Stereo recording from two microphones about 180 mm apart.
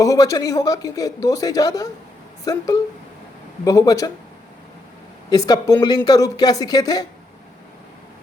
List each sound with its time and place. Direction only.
0.0 s a woman's voice: 20° left (ahead or behind)
5.3 s speech: 20° left (ahead or behind)